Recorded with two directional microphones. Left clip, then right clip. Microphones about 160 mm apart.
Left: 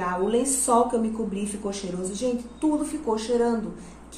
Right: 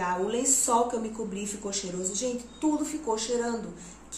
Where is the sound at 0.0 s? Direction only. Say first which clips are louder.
Left 4 dB; 10° right (ahead or behind).